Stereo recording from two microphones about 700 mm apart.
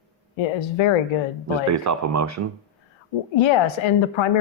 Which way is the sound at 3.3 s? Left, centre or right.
Left.